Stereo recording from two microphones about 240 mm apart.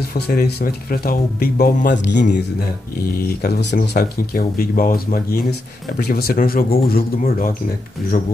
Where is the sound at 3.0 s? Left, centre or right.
Left.